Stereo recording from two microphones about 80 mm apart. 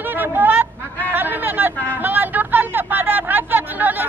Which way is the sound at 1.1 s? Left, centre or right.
Right.